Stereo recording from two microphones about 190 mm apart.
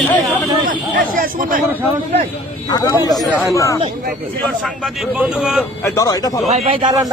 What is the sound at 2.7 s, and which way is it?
Speech, 20° left (ahead or behind).